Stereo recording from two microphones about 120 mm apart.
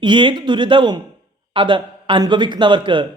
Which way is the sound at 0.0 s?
40° right (ahead or behind).